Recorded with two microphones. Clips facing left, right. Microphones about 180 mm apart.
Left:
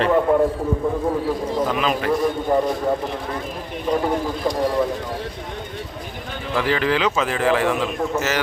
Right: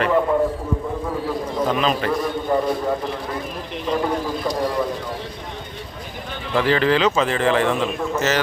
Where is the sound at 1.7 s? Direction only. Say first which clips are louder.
Right 1 dB; 10° left (ahead or behind).